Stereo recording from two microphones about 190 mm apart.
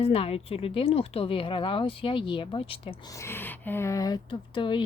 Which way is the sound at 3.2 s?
10° left (ahead or behind).